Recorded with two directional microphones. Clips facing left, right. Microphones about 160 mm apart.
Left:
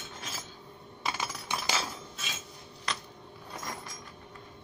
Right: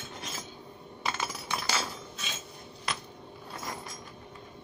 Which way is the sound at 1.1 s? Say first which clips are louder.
Right 1 dB; 15° left (ahead or behind).